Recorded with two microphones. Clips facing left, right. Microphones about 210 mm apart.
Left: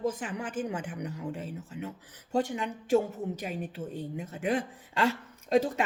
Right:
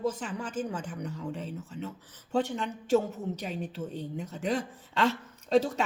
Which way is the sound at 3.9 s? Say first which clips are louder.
Even; 50° left (ahead or behind).